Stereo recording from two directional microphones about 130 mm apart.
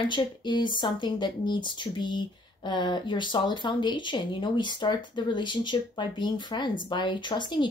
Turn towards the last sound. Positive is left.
turn(degrees=35)  # may be behind; listen again after turning